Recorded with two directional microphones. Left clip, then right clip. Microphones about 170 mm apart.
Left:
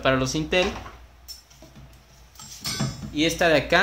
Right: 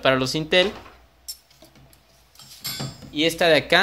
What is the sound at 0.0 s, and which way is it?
Speech, 35° right (ahead or behind).